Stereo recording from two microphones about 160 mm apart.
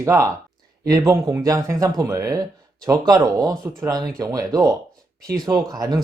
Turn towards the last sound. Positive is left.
turn(degrees=-25)  # may be behind; listen again after turning